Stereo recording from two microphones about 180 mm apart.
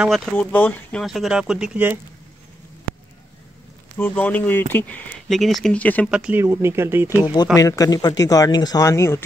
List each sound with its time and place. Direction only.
0.0 s speech: centre (ahead or behind)
4.0 s speech: 10° left (ahead or behind)
6.0 s speech: 5° right (ahead or behind)
7.5 s speech: 20° left (ahead or behind)